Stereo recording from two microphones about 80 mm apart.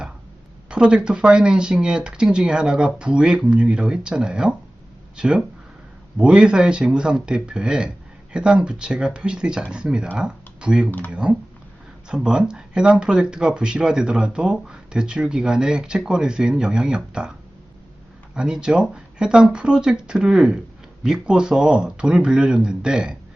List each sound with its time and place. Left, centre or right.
0.7 s speech: centre
18.3 s speech: centre